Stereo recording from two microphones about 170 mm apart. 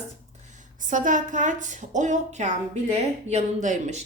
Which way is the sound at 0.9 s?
50° right (ahead or behind).